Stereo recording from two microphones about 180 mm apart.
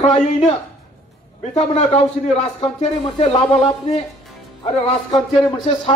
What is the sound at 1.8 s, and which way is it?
Speech, 35° left (ahead or behind).